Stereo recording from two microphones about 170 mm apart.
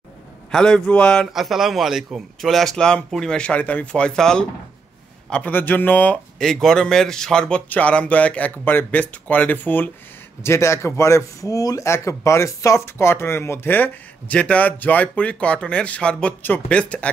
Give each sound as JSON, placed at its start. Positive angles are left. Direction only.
{"t": 0.5, "sound": "a man's voice", "side_deg": 5}